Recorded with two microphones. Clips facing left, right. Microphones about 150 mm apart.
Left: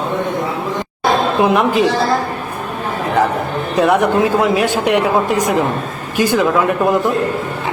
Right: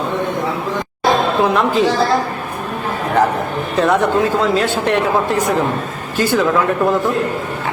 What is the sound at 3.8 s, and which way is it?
Speech, 15° left (ahead or behind).